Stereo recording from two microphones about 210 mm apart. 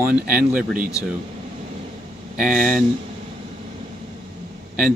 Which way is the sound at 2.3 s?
5° right (ahead or behind).